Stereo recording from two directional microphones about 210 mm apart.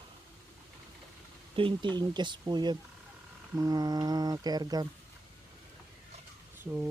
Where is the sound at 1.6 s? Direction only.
25° right (ahead or behind).